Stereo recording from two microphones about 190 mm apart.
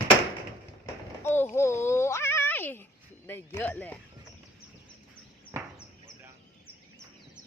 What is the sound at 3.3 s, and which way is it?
Speech, 10° left (ahead or behind).